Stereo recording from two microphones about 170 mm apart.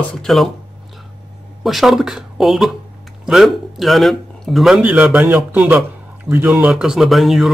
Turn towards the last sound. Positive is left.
turn(degrees=0)  # may be behind; listen again after turning